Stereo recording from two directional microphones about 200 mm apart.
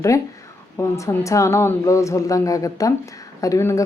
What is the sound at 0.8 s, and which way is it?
Speech, 15° left (ahead or behind).